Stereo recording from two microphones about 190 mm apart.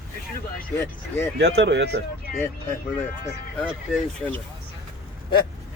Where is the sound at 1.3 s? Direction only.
65° right (ahead or behind).